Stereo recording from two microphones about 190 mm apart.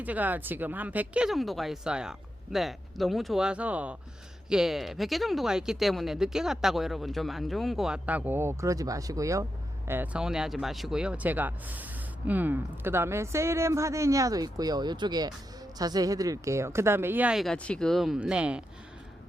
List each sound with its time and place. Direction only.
0.0 s speech: 10° right (ahead or behind)